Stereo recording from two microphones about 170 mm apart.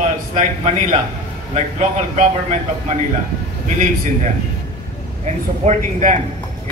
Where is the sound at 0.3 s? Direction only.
40° right (ahead or behind).